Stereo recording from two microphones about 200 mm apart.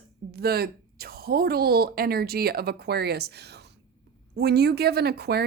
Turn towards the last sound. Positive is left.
turn(degrees=-55)  # may be behind; listen again after turning